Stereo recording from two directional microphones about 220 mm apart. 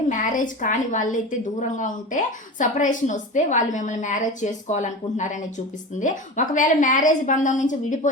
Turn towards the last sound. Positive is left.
turn(degrees=35)  # may be behind; listen again after turning